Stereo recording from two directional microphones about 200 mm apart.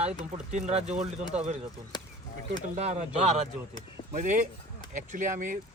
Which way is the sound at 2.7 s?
35° right (ahead or behind).